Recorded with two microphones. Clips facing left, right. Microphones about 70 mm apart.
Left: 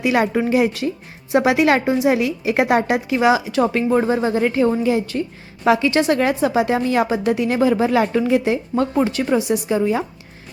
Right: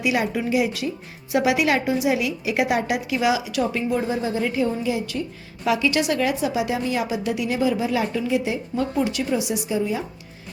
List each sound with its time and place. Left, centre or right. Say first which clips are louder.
0.0 s a woman's voice: left 5 dB; left